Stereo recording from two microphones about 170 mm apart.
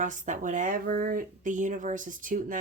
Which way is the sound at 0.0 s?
50° right (ahead or behind).